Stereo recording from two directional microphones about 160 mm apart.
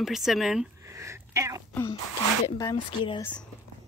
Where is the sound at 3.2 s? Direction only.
10° left (ahead or behind).